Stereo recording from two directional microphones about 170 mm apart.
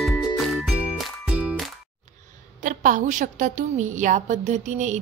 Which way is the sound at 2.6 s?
50° right (ahead or behind).